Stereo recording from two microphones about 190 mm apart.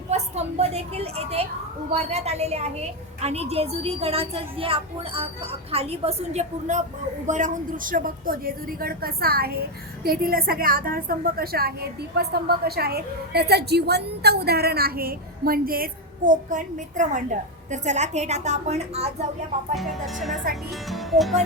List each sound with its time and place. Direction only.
0.1 s a woman's voice: 35° right (ahead or behind)
19.7 s speech: centre (ahead or behind)